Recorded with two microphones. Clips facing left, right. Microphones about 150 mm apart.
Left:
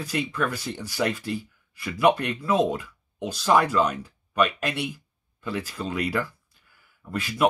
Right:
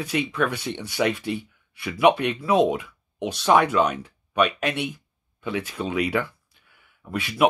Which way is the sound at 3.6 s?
60° right (ahead or behind).